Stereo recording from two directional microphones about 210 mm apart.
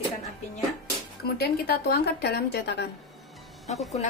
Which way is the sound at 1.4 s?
50° left (ahead or behind).